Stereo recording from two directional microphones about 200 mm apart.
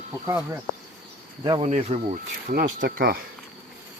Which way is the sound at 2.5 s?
45° right (ahead or behind).